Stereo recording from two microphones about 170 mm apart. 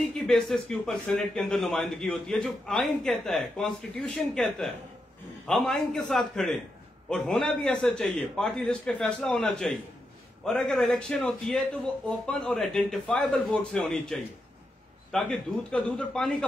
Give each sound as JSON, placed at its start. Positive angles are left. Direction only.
{"t": 0.0, "sound": "a man's voice", "side_deg": 0}